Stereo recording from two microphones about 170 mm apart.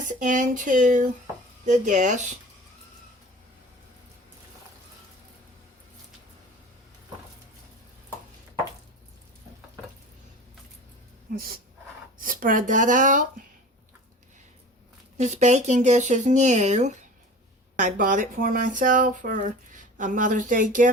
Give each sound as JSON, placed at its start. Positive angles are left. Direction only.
{"t": 0.0, "sound": "speech", "side_deg": -50}
{"t": 11.3, "sound": "speech", "side_deg": -60}
{"t": 15.2, "sound": "speech", "side_deg": -40}